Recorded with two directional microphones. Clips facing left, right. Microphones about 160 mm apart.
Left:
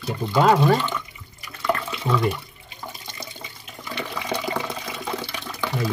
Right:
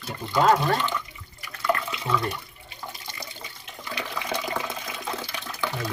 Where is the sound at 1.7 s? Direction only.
25° left (ahead or behind).